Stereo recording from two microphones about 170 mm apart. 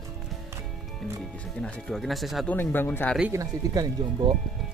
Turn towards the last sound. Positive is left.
turn(degrees=-20)  # may be behind; listen again after turning